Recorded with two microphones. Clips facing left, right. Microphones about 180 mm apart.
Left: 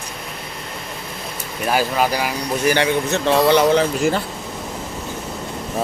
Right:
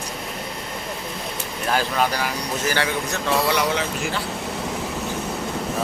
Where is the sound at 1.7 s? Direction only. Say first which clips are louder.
Left 3 dB; 10° left (ahead or behind); by 4.2 s 35° left (ahead or behind).